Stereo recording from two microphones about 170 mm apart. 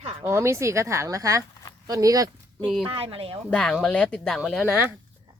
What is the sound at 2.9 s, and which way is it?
Speech, 35° right (ahead or behind).